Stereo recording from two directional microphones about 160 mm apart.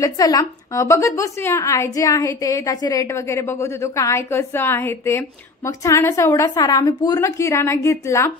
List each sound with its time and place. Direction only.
0.0 s a woman's voice: 20° left (ahead or behind)